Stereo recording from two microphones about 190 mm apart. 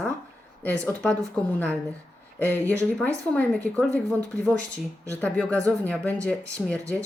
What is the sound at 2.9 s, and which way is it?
Speech, 5° left (ahead or behind).